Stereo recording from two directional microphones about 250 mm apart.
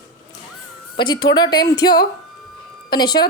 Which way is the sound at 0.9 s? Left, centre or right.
Centre.